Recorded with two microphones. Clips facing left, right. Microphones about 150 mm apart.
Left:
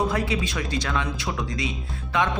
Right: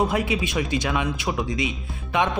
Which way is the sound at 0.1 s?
15° right (ahead or behind).